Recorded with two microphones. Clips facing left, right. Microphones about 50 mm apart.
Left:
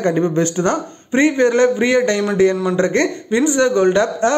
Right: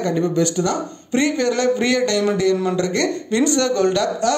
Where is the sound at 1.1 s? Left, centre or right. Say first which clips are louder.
Left 5 dB; left.